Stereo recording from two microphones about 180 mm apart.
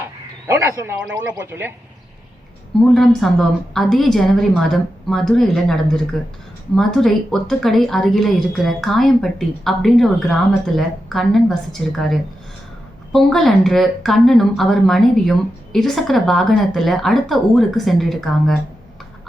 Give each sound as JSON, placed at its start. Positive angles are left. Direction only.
{"t": 0.4, "sound": "speech", "side_deg": -15}
{"t": 2.9, "sound": "speech", "side_deg": 0}